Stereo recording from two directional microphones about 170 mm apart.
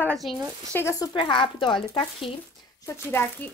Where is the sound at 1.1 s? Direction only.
30° left (ahead or behind).